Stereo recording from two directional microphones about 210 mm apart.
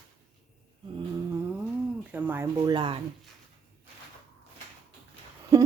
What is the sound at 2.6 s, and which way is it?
Speech, 20° right (ahead or behind).